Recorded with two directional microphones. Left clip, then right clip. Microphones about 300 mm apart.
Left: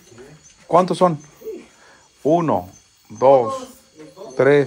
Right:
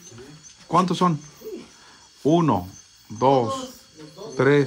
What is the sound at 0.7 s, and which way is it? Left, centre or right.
Speech, centre.